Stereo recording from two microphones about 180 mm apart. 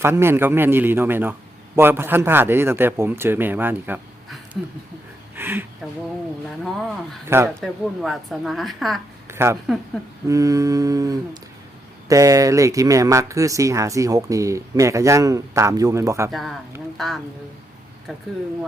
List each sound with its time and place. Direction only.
0.0 s speech: 15° right (ahead or behind)
5.4 s a sound: 10° right (ahead or behind)
6.6 s speech: centre (ahead or behind)
7.3 s speech: 15° right (ahead or behind)
7.6 s speech: centre (ahead or behind)
9.3 s a woman's voice: 15° right (ahead or behind)
10.2 s a sound: 20° right (ahead or behind)
12.0 s speech: 20° right (ahead or behind)
16.3 s speech: centre (ahead or behind)